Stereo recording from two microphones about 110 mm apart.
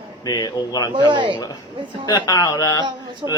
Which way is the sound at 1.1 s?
45° right (ahead or behind).